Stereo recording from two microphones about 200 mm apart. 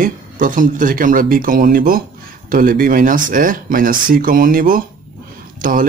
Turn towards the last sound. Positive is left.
turn(degrees=-45)  # may be behind; listen again after turning